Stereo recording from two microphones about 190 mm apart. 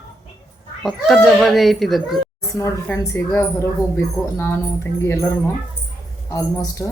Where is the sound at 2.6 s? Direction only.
15° left (ahead or behind).